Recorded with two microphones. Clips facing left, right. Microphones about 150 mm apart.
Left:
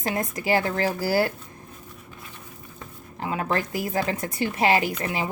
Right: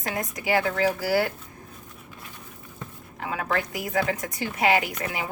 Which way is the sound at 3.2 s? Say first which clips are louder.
Left 2 dB; 30° left (ahead or behind).